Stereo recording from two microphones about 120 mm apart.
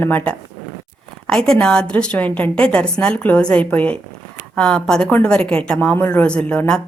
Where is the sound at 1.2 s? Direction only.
5° left (ahead or behind).